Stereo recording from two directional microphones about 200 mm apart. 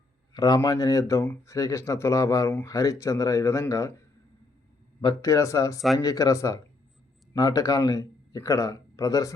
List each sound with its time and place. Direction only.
0.3 s speech: 20° left (ahead or behind)